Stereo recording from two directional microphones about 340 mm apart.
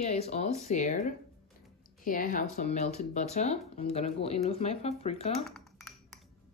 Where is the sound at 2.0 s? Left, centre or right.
Left.